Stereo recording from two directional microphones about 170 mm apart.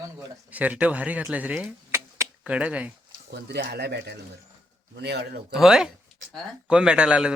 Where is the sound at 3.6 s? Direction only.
70° right (ahead or behind).